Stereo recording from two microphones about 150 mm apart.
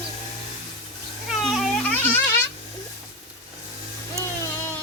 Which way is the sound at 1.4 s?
Centre (ahead or behind).